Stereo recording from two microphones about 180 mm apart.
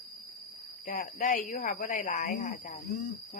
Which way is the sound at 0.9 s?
50° left (ahead or behind).